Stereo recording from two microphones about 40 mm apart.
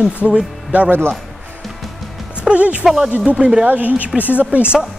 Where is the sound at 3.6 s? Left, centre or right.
Right.